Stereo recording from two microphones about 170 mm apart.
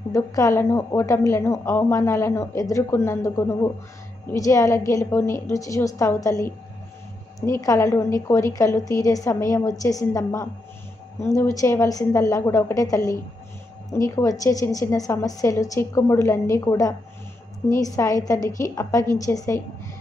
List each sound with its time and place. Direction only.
0.1 s a woman's voice: 20° left (ahead or behind)